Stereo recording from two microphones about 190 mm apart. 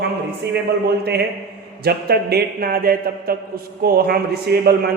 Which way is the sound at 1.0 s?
60° right (ahead or behind).